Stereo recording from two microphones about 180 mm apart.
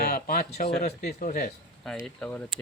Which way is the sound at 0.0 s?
60° left (ahead or behind).